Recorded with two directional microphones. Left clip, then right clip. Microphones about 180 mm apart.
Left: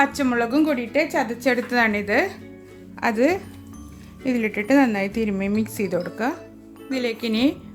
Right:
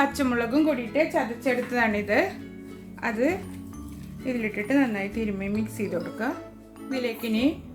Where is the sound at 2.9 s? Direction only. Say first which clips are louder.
Left 6 dB; 40° left (ahead or behind).